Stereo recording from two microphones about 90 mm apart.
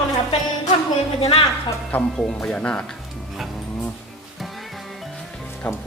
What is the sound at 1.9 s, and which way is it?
Speech, 10° left (ahead or behind).